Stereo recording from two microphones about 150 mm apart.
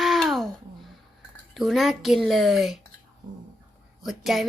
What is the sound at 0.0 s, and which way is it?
Wail, centre (ahead or behind).